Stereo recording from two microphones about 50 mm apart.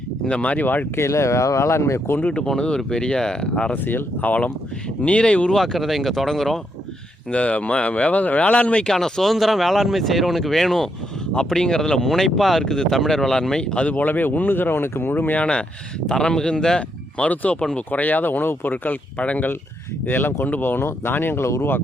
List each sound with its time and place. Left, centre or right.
0.3 s speech: left
0.9 s speech: left
2.5 s speech: centre
3.7 s speech: left
5.0 s speech: left
5.5 s speech: centre
7.3 s speech: left
8.9 s speech: centre; by 15.4 s left
15.4 s speech: centre
17.2 s speech: left
20.1 s speech: left
21.4 s speech: left